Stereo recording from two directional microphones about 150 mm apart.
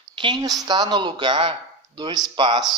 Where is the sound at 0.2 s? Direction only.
30° right (ahead or behind).